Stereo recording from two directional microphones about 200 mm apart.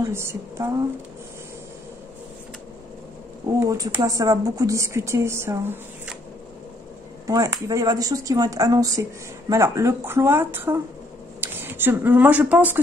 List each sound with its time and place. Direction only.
0.0 s speech: 15° right (ahead or behind)
3.5 s speech: 15° right (ahead or behind)
7.2 s speech: 15° right (ahead or behind)